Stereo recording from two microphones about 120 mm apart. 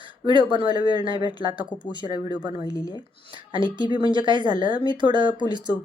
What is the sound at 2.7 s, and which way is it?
Speech, 30° left (ahead or behind).